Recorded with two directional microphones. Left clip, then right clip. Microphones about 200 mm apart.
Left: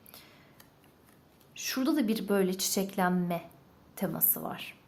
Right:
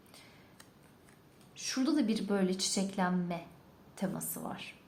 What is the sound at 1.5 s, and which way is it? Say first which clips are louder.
A woman's voice: left 2 dB; 25° left (ahead or behind).